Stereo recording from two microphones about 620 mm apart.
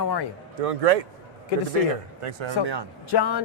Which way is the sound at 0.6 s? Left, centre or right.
Right.